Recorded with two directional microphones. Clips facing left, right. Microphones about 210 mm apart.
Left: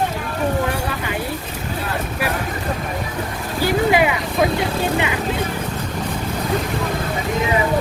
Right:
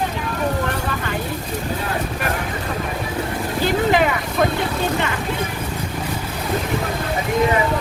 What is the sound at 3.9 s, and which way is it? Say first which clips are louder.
Speech: left 1 dB; 10° left (ahead or behind).